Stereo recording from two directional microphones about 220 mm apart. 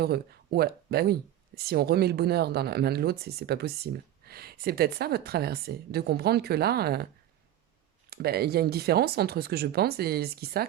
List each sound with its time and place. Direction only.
0.0 s speech: 45° right (ahead or behind)
8.1 s speech: 45° right (ahead or behind)